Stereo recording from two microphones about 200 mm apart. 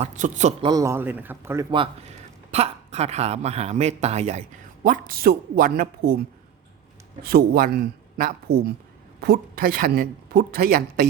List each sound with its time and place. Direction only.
0.0 s speech: 35° right (ahead or behind)
0.6 s a man's voice: 20° right (ahead or behind)
2.5 s speech: 30° right (ahead or behind)
7.2 s a woman's voice: 50° right (ahead or behind)